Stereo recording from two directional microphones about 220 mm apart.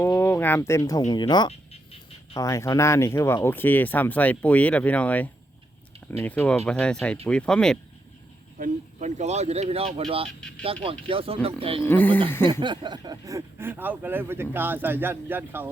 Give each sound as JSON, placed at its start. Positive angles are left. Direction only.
{"t": 0.0, "sound": "a sound", "side_deg": 10}
{"t": 2.4, "sound": "speech", "side_deg": 15}
{"t": 8.5, "sound": "speech", "side_deg": -35}
{"t": 11.8, "sound": "speech", "side_deg": 10}
{"t": 12.5, "sound": "speech", "side_deg": -20}